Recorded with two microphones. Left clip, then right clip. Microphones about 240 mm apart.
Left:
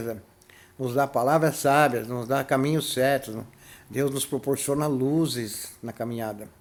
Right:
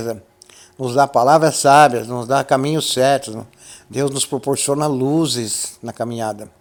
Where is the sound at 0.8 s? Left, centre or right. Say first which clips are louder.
Right 10 dB; right.